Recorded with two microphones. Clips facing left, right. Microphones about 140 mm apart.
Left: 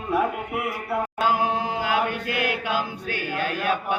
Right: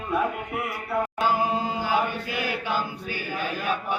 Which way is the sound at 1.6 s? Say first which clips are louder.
Left 1 dB; 65° left (ahead or behind).